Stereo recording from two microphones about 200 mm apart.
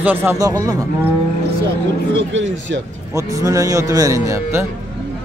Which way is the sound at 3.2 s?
15° right (ahead or behind).